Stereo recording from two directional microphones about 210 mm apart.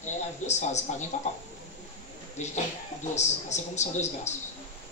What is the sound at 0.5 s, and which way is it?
Speech, 35° left (ahead or behind).